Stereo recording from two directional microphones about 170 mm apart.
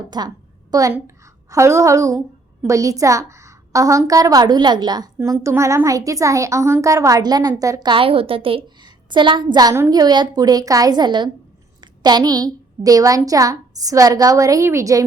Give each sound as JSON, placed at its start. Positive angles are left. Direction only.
{"t": 0.1, "sound": "a woman's voice", "side_deg": -25}